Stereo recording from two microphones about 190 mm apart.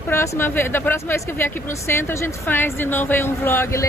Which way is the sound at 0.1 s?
15° left (ahead or behind).